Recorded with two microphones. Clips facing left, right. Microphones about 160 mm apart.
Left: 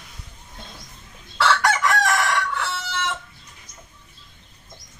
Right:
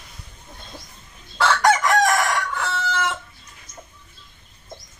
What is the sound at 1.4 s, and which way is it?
Chicken, 40° right (ahead or behind).